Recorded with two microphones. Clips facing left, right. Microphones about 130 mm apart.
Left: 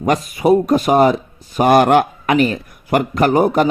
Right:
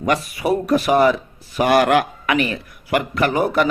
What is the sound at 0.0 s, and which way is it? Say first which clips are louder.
Speech: left 4 dB; 40° left (ahead or behind).